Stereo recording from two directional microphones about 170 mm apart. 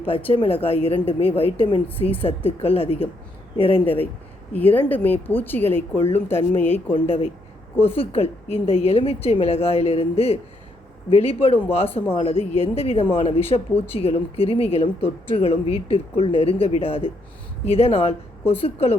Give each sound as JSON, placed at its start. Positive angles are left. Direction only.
{"t": 0.3, "sound": "a woman's voice", "side_deg": 35}
{"t": 3.8, "sound": "speech", "side_deg": 10}
{"t": 7.8, "sound": "a woman's voice", "side_deg": 35}